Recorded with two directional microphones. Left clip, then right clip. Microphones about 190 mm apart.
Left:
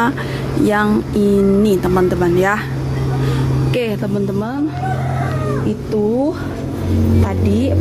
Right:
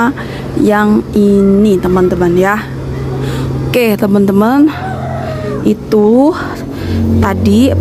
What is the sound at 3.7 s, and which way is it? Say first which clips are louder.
Speech: right 10 dB; 25° right (ahead or behind).